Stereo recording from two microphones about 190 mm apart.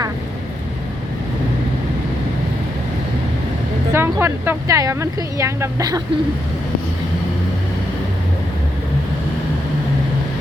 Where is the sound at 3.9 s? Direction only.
10° right (ahead or behind).